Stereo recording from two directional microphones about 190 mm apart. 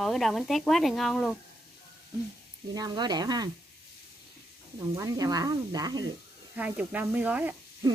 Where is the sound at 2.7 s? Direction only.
20° right (ahead or behind).